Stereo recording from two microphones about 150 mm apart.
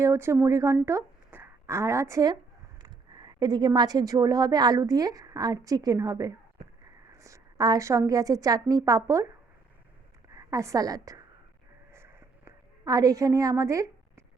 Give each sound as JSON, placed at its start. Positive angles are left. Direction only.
{"t": 0.0, "sound": "a woman's voice", "side_deg": -15}
{"t": 10.3, "sound": "a woman's voice", "side_deg": -20}
{"t": 11.9, "sound": "a sound", "side_deg": -15}